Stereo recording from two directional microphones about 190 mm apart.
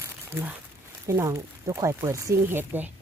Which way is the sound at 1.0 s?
15° right (ahead or behind).